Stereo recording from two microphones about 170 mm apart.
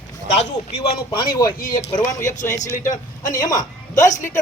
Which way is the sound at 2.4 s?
45° left (ahead or behind).